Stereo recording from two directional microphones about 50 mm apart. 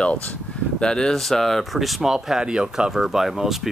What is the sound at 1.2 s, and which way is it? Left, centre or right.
Speech, centre.